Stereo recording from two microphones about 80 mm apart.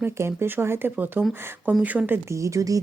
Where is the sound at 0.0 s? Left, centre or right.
Right.